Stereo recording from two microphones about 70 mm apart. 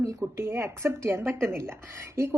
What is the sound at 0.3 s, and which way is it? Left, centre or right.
A woman's voice, right.